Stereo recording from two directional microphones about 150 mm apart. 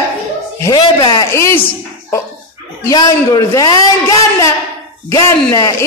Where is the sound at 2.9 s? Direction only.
25° left (ahead or behind).